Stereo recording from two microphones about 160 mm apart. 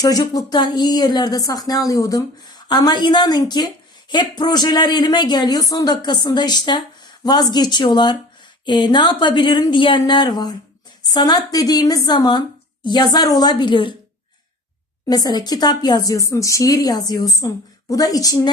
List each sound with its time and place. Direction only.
0.0 s speech: 25° left (ahead or behind)
15.0 s speech: 25° left (ahead or behind)